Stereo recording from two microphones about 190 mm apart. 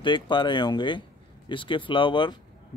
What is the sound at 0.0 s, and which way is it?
A man's voice, 25° left (ahead or behind).